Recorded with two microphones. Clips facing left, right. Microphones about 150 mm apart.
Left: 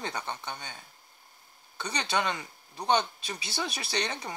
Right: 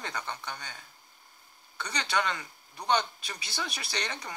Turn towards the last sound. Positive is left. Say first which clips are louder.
# left 4 dB
turn(degrees=25)  # may be behind; listen again after turning